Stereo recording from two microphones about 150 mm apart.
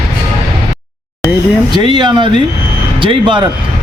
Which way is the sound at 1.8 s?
30° right (ahead or behind).